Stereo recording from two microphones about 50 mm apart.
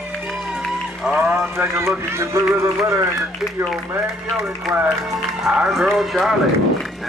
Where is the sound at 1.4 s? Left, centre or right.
Right.